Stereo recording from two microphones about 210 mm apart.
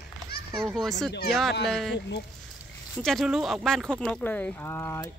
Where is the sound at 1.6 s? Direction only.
Centre (ahead or behind).